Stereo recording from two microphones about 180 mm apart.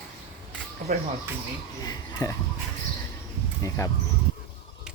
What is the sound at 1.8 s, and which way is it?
Speech, 20° left (ahead or behind).